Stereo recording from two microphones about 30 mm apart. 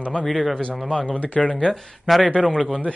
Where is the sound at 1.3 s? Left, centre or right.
Left.